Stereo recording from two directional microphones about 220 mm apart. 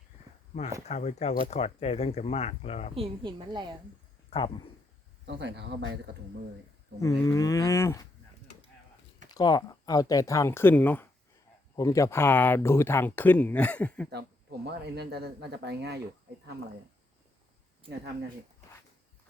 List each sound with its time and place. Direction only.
0.9 s speech: 30° left (ahead or behind)
2.9 s a woman's voice: 25° right (ahead or behind)
4.3 s speech: 25° left (ahead or behind)
5.2 s speech: 55° right (ahead or behind)
7.0 s speech: 15° left (ahead or behind)
9.3 s speech: 20° left (ahead or behind)
14.1 s speech: 50° right (ahead or behind)